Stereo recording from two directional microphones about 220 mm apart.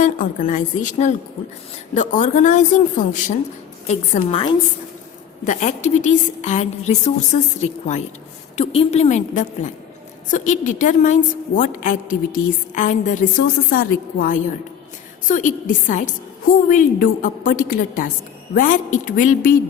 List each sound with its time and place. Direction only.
0.0 s a woman's voice: 35° left (ahead or behind)
5.5 s a woman's voice: 35° left (ahead or behind)